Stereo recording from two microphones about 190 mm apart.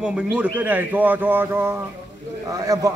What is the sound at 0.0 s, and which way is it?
A man's voice, 5° right (ahead or behind).